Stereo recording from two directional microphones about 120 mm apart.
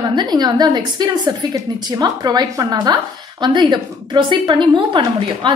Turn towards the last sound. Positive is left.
turn(degrees=-40)  # may be behind; listen again after turning